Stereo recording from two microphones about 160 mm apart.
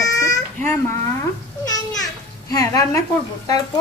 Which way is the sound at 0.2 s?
15° left (ahead or behind).